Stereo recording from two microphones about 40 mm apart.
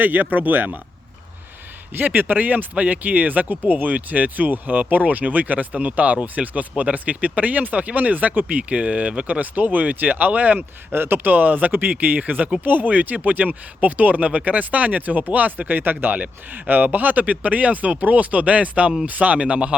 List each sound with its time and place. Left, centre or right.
0.0 s speech: right
2.0 s speech: right
2.7 s speech: right
10.9 s speech: right
11.3 s speech: right
15.8 s speech: right